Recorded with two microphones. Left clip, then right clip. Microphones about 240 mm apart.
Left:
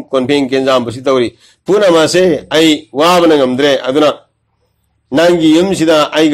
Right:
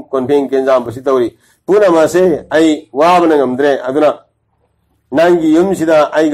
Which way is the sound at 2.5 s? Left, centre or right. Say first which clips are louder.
Left 1 dB; left.